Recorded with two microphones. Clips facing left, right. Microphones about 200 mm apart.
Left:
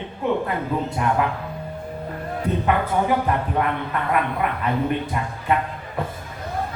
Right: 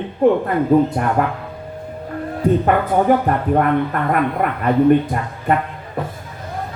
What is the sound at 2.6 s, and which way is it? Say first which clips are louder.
Speech: right 6 dB; 50° right (ahead or behind).